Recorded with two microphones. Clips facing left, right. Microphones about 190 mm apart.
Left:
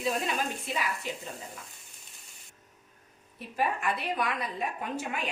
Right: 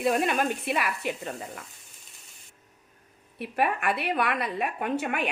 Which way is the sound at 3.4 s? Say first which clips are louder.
Right 4 dB; 65° right (ahead or behind).